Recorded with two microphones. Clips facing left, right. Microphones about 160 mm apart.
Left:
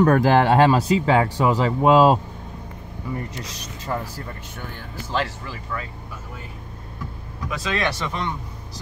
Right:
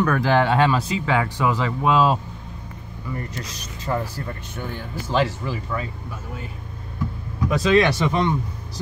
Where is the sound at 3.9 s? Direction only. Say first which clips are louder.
Right 3 dB; 5° left (ahead or behind).